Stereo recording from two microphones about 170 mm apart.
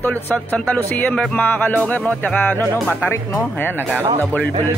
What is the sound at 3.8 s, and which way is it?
Speech, 10° right (ahead or behind).